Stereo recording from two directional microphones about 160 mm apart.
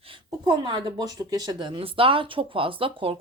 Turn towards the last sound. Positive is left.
turn(degrees=-35)  # may be behind; listen again after turning